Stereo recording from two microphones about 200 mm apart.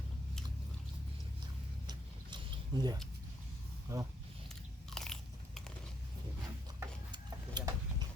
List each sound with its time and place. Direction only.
1.9 s a sound: 20° right (ahead or behind)
3.9 s speech: 15° right (ahead or behind)
4.4 s biting: centre (ahead or behind)
6.7 s stir: 20° right (ahead or behind)